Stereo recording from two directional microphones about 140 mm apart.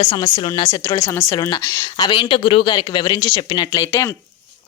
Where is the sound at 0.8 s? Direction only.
20° left (ahead or behind).